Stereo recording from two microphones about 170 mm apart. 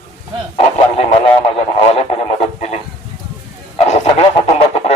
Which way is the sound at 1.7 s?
35° left (ahead or behind).